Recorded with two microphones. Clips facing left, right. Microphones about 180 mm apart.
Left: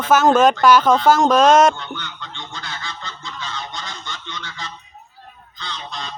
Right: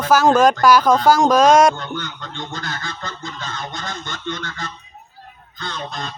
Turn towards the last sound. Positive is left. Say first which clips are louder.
# right 3 dB
turn(degrees=-50)  # may be behind; listen again after turning